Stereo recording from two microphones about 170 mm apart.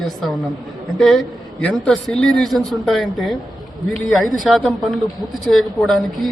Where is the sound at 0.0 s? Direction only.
Centre (ahead or behind).